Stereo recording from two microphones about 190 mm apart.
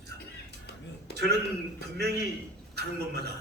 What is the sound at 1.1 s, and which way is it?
Speech, 55° left (ahead or behind).